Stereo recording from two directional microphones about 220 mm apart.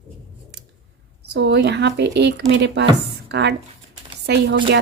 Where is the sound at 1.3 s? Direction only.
50° right (ahead or behind).